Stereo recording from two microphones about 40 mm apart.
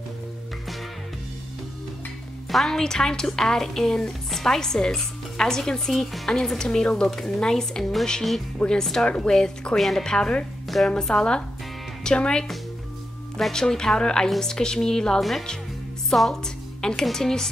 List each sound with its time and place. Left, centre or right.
2.5 s a woman's voice: centre
9.8 s a woman's voice: centre
10.0 s a woman's voice: centre
13.5 s speech: centre
15.1 s a woman's voice: centre